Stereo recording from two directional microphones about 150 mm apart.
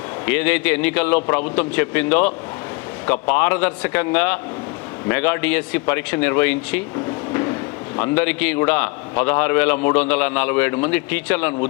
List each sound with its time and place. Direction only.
0.3 s a man's voice: 10° left (ahead or behind)